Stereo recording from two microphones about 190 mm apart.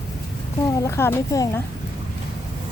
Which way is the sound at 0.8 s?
15° left (ahead or behind).